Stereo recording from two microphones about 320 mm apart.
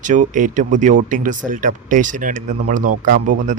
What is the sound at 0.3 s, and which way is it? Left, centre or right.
Speech, right.